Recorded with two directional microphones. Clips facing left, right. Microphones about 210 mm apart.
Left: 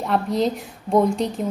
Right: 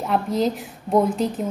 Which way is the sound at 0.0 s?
Centre (ahead or behind).